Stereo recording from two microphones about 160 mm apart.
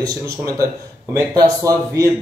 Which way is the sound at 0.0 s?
20° right (ahead or behind).